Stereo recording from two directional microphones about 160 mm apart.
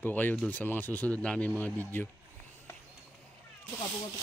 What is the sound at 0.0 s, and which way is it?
Speech, 10° left (ahead or behind).